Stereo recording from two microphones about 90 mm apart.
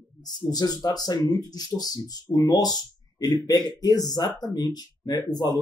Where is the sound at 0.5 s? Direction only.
45° left (ahead or behind).